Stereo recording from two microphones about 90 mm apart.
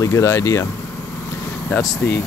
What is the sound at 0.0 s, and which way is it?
Speech, 35° left (ahead or behind).